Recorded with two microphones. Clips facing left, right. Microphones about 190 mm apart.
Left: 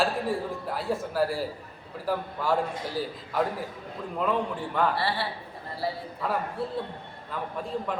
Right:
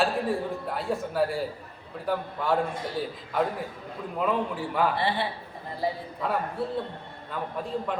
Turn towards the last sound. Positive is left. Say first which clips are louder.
# right 1 dB
turn(degrees=0)  # may be behind; listen again after turning